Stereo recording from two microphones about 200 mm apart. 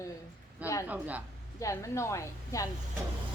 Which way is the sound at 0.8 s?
10° right (ahead or behind).